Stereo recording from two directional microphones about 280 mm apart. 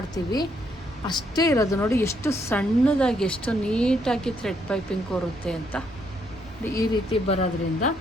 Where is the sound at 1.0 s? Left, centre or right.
Centre.